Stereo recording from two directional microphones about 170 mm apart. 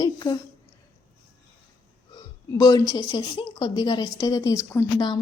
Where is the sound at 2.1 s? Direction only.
25° left (ahead or behind).